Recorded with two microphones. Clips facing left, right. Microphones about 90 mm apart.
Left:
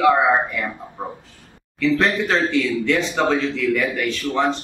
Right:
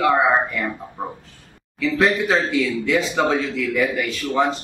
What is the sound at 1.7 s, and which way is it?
Speech, 5° right (ahead or behind).